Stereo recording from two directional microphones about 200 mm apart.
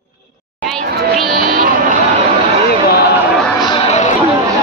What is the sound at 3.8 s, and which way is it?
Chatter, 35° left (ahead or behind).